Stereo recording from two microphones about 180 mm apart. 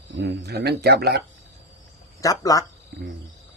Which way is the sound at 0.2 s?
70° right (ahead or behind).